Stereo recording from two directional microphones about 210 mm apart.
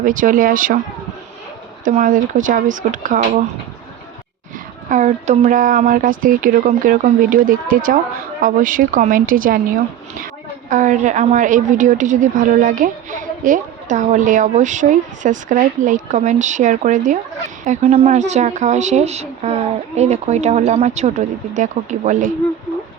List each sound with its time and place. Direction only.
0.0 s a woman's voice: 40° right (ahead or behind)
1.8 s a woman's voice: 35° right (ahead or behind)
4.9 s a woman's voice: 35° right (ahead or behind)
10.7 s a woman's voice: 35° right (ahead or behind)